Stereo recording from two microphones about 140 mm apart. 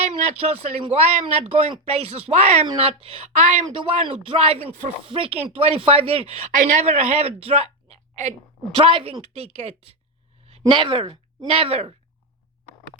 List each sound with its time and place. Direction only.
0.0 s speech: 50° right (ahead or behind)
3.8 s speech: 40° right (ahead or behind)
6.5 s a woman's voice: 70° right (ahead or behind)
6.8 s a woman's voice: 50° right (ahead or behind)
8.8 s speech: 40° right (ahead or behind)
10.7 s a woman's voice: 40° right (ahead or behind)